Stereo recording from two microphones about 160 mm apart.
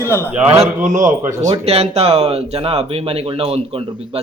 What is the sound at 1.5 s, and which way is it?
Speech, 40° right (ahead or behind).